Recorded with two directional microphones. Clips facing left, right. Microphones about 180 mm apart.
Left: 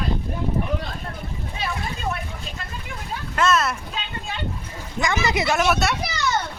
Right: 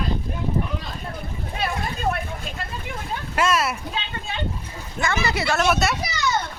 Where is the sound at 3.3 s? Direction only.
10° right (ahead or behind).